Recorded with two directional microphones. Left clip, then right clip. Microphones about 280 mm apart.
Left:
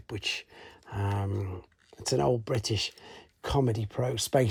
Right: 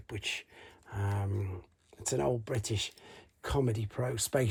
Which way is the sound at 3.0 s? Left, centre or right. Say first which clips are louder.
Left 4 dB; centre.